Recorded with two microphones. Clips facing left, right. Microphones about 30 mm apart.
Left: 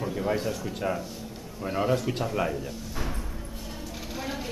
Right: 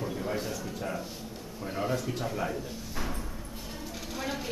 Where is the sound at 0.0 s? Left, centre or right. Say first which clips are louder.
Left 5 dB; centre.